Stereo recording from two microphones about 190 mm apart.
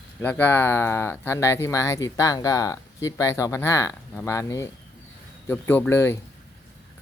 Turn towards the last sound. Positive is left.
turn(degrees=10)  # may be behind; listen again after turning